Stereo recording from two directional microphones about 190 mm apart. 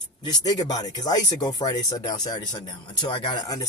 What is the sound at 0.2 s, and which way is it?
Speech, 20° left (ahead or behind).